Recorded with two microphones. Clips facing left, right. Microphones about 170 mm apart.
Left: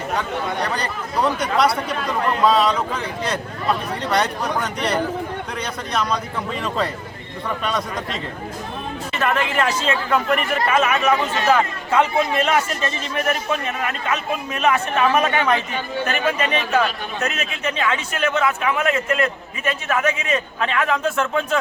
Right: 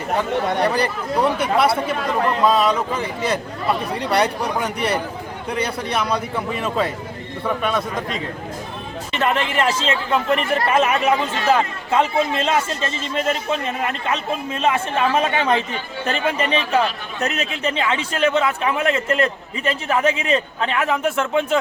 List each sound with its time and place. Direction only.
1.4 s a man's voice: 5° right (ahead or behind)
9.1 s a man's voice: 25° right (ahead or behind)